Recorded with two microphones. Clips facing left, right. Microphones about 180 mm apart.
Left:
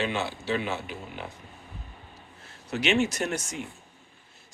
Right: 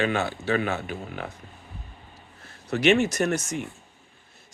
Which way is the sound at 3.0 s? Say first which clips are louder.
Right 3 dB; 45° right (ahead or behind).